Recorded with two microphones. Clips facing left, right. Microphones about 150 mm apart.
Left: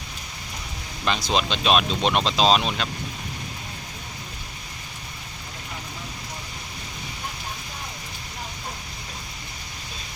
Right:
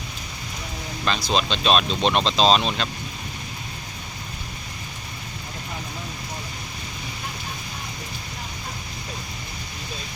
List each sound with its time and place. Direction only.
1.0 s speech: 15° left (ahead or behind)